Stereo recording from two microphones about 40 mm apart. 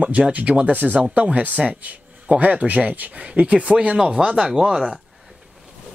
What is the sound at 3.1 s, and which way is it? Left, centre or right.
Speech, right.